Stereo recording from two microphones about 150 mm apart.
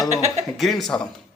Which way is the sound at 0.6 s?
Centre (ahead or behind).